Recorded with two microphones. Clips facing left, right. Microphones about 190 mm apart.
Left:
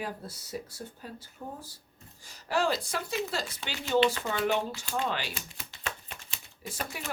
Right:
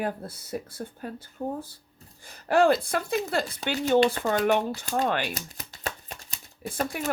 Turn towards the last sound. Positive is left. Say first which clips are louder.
# right 8 dB
turn(degrees=-50)  # may be behind; listen again after turning